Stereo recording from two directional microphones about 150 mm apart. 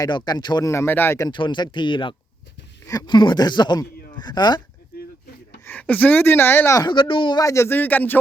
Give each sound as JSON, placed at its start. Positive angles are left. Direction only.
{"t": 0.0, "sound": "speech", "side_deg": 25}
{"t": 1.3, "sound": "speech", "side_deg": 30}
{"t": 5.6, "sound": "speech", "side_deg": 10}
{"t": 6.8, "sound": "speech", "side_deg": 35}